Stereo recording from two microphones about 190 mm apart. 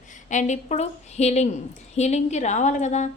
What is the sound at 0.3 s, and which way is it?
Speech, 40° left (ahead or behind).